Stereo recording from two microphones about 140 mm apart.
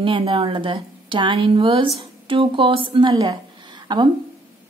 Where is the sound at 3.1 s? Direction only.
30° right (ahead or behind).